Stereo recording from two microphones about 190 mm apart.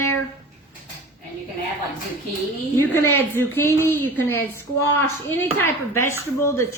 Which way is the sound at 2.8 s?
10° left (ahead or behind).